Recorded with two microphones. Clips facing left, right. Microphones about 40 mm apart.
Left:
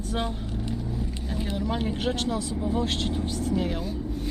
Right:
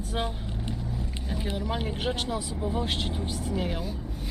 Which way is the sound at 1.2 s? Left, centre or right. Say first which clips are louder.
Left 2 dB; centre.